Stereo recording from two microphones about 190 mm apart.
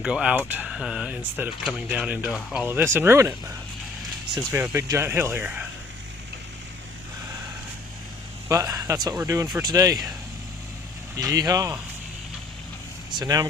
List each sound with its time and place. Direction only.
0.0 s speech: 5° right (ahead or behind)
4.6 s speech: 15° right (ahead or behind)
8.4 s speech: 15° right (ahead or behind)
11.2 s speech: 20° right (ahead or behind)
13.1 s speech: 20° right (ahead or behind)